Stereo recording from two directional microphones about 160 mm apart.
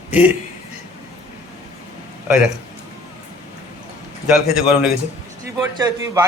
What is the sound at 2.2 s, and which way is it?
Speech, 5° right (ahead or behind).